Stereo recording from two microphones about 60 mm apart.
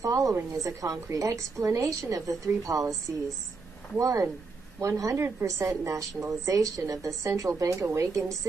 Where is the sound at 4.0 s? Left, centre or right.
Right.